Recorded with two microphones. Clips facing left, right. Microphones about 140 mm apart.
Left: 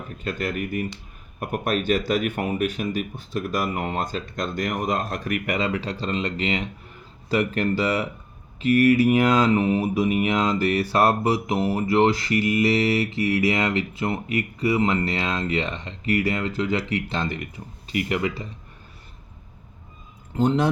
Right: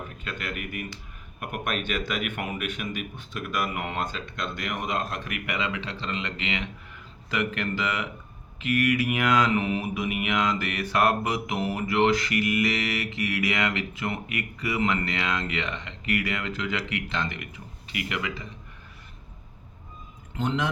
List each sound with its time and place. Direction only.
0.3 s mantra: 40° left (ahead or behind)
20.3 s mantra: 35° left (ahead or behind)